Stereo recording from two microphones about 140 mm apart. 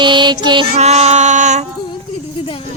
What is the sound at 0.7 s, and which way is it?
Speech, 50° right (ahead or behind).